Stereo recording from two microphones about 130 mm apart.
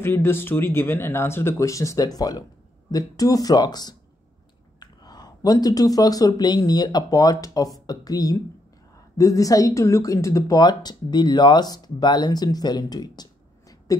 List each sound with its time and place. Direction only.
0.0 s speech: 20° left (ahead or behind)